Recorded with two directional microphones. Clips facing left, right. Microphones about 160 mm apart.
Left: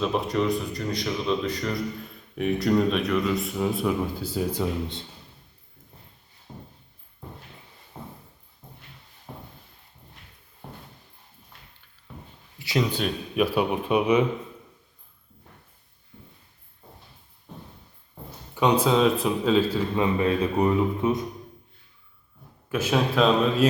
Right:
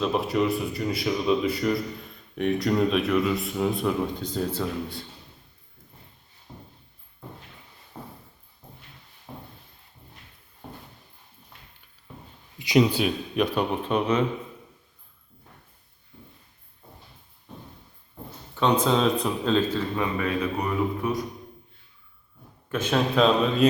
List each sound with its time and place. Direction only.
0.0 s speech: centre (ahead or behind); by 5.0 s 20° left (ahead or behind)
6.5 s a sound: 10° left (ahead or behind)
7.9 s a sound: 10° left (ahead or behind)
12.5 s speech: 15° right (ahead or behind)
13.3 s speech: 5° left (ahead or behind)
18.5 s speech: 10° left (ahead or behind)
20.0 s a man's voice: 25° left (ahead or behind)
22.7 s speech: 5° left (ahead or behind)